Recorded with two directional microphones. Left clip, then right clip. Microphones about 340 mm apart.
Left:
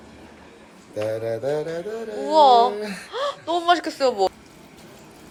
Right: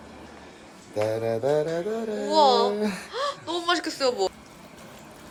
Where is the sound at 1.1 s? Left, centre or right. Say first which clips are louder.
Right 1 dB; right.